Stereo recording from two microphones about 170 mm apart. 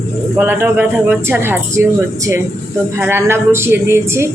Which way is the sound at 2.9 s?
15° right (ahead or behind).